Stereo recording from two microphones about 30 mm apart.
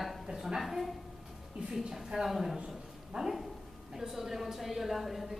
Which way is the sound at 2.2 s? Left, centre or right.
Centre.